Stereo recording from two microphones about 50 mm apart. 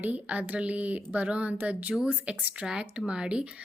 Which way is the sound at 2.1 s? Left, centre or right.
Right.